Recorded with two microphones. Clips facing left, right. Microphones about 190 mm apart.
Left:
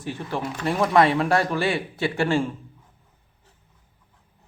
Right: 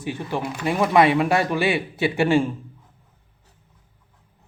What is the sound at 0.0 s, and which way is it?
Speech, 15° right (ahead or behind).